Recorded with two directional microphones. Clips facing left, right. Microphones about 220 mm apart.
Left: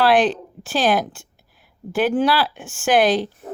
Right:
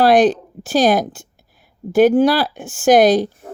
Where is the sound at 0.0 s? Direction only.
40° right (ahead or behind).